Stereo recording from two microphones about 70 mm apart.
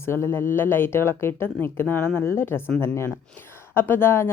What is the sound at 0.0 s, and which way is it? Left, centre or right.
Speech, left.